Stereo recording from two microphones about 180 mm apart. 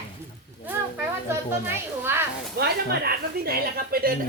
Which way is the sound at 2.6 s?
55° right (ahead or behind).